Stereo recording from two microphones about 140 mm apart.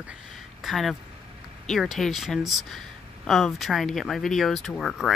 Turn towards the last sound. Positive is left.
turn(degrees=0)  # may be behind; listen again after turning